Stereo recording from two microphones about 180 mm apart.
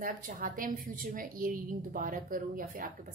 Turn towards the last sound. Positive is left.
turn(degrees=-50)  # may be behind; listen again after turning